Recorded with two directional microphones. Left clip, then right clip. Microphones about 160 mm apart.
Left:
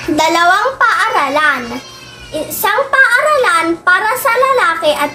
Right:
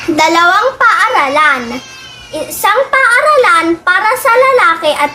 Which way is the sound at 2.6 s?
30° right (ahead or behind).